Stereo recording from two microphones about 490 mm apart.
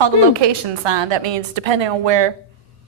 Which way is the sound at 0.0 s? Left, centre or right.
Right.